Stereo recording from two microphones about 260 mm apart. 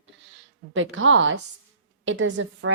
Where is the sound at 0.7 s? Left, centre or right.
Right.